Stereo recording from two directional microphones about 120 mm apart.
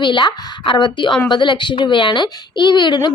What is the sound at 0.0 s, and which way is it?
Speech, 40° left (ahead or behind).